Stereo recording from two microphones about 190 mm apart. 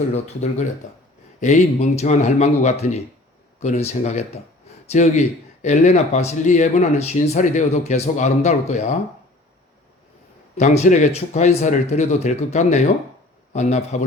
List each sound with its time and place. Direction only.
1.4 s speech: 40° left (ahead or behind)
10.6 s speech: 40° left (ahead or behind)